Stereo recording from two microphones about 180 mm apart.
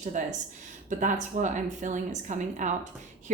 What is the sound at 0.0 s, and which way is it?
A woman's voice, 40° right (ahead or behind).